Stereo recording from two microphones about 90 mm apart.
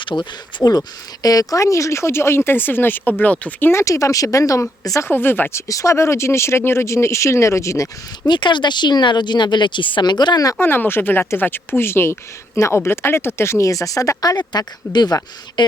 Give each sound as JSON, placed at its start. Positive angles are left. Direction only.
{"t": 0.0, "sound": "speech", "side_deg": 60}
{"t": 0.6, "sound": "speech", "side_deg": 40}
{"t": 3.7, "sound": "speech", "side_deg": 35}
{"t": 5.0, "sound": "speech", "side_deg": 25}
{"t": 5.6, "sound": "speech", "side_deg": 35}
{"t": 8.3, "sound": "speech", "side_deg": 60}
{"t": 10.6, "sound": "speech", "side_deg": 25}